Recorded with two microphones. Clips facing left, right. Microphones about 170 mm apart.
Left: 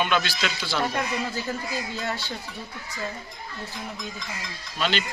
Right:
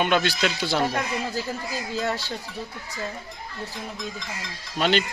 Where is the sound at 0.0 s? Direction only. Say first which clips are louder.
Right 3 dB; 50° right (ahead or behind).